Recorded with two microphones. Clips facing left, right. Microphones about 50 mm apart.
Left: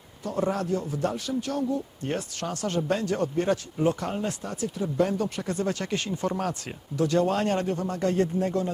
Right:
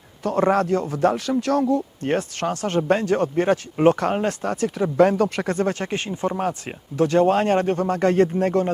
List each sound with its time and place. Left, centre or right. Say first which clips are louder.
0.2 s a man's voice: right 8 dB; right
2.1 s speech: right 9 dB; right
3.8 s a man's voice: right 8 dB; right
5.5 s speech: right 4 dB; right
5.9 s speech: right 3 dB; right
6.9 s speech: right 6 dB; right